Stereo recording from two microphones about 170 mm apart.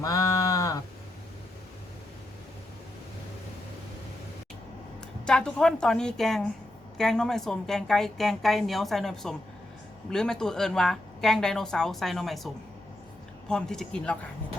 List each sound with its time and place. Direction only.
0.0 s sheep: 20° left (ahead or behind)
5.2 s a woman's voice: 5° left (ahead or behind)
13.5 s a woman's voice: 5° left (ahead or behind)